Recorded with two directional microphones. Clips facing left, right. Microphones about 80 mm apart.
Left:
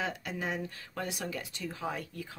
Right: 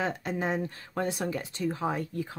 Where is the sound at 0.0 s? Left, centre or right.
Right.